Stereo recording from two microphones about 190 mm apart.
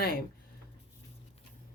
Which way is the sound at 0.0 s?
50° left (ahead or behind).